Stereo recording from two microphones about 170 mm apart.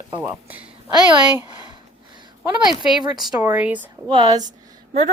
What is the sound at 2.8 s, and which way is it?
A woman's voice, 5° right (ahead or behind).